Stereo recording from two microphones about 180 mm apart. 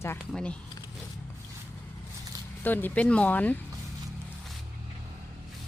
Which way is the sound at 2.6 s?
10° left (ahead or behind).